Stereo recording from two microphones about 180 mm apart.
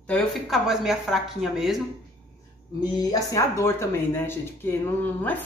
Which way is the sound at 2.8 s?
20° left (ahead or behind).